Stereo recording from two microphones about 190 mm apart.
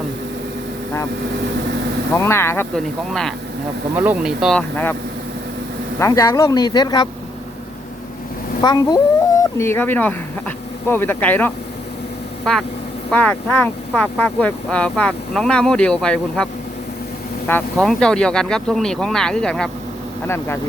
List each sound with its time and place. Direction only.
2.1 s speech: 15° left (ahead or behind)
3.9 s speech: 10° right (ahead or behind)
6.0 s speech: 15° left (ahead or behind)
8.6 s speech: 20° left (ahead or behind); by 16.5 s 5° left (ahead or behind)
17.5 s speech: 5° left (ahead or behind)